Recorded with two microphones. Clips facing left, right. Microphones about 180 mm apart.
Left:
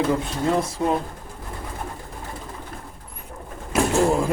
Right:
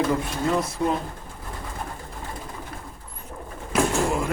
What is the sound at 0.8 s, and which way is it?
Speech, 20° left (ahead or behind).